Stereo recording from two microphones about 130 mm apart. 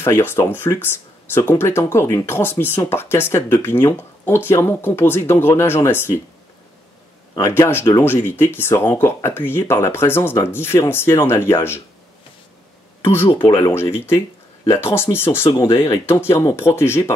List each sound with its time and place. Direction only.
0.0 s speech: 15° left (ahead or behind)
7.4 s speech: 20° left (ahead or behind)
13.1 s speech: 20° left (ahead or behind)